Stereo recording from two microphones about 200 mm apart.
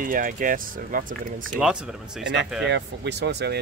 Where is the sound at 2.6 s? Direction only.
60° right (ahead or behind).